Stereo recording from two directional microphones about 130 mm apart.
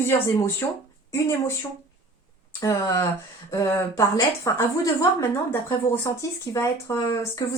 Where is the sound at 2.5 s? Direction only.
25° left (ahead or behind).